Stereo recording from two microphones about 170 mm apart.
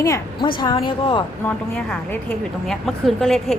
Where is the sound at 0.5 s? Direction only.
30° left (ahead or behind).